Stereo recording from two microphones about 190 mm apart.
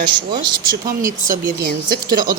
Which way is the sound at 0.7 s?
45° right (ahead or behind).